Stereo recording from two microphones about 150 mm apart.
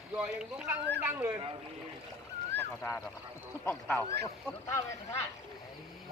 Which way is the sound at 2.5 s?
15° left (ahead or behind).